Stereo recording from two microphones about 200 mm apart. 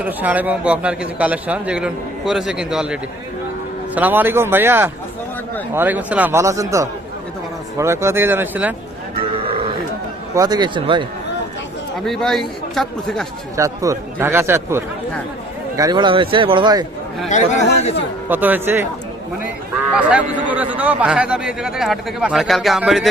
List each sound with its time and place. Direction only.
0.0 s a man's voice: 10° right (ahead or behind)
10.3 s speech: 20° right (ahead or behind)
12.0 s a man's voice: centre (ahead or behind)
13.6 s a man's voice: 15° right (ahead or behind)
17.2 s speech: 35° left (ahead or behind)
18.3 s a man's voice: 10° right (ahead or behind)
20.0 s a man's voice: 5° right (ahead or behind)